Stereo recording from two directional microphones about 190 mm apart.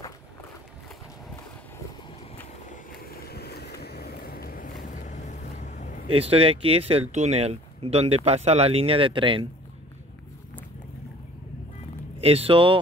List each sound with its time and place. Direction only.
2.3 s vehicle: 45° left (ahead or behind)
4.8 s vehicle: 40° left (ahead or behind)
6.1 s speech: 30° right (ahead or behind)
12.2 s speech: 30° right (ahead or behind)